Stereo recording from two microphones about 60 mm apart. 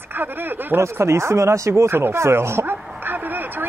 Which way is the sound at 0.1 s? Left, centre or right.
Right.